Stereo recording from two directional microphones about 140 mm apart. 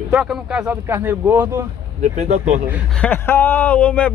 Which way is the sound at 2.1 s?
55° right (ahead or behind).